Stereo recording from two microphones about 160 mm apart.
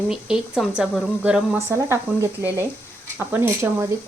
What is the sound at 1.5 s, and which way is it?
Speech, 15° right (ahead or behind).